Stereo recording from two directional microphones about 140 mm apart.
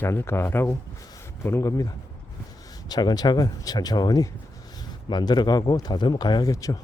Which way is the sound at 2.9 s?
30° left (ahead or behind).